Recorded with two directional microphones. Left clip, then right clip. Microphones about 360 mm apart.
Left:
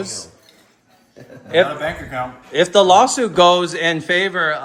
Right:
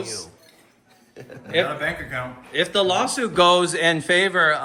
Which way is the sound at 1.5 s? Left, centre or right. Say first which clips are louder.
Left 6 dB; centre.